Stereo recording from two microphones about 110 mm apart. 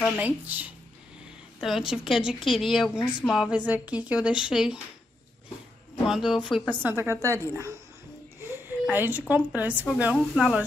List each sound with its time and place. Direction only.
0.2 s speech: 15° right (ahead or behind)
1.6 s a woman's voice: 5° right (ahead or behind)
6.0 s a woman's voice: 5° right (ahead or behind)
6.8 s a woman's voice: 20° right (ahead or behind)
8.5 s a sound: 20° right (ahead or behind)
9.3 s speech: 15° right (ahead or behind)